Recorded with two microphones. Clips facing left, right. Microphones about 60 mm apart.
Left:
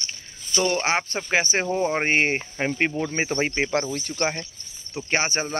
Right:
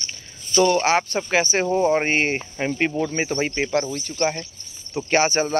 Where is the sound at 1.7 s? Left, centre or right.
Centre.